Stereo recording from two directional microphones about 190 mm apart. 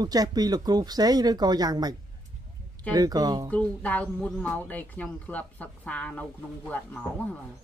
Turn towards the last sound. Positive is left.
turn(degrees=10)  # may be behind; listen again after turning